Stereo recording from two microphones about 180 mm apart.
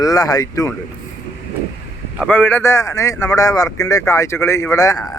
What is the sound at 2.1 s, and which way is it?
A man's voice, 5° left (ahead or behind).